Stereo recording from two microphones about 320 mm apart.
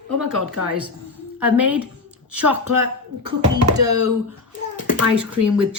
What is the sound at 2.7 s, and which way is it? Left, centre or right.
Speech, right.